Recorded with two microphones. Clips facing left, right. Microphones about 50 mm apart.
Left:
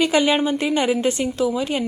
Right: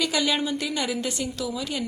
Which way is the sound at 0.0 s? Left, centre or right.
Left.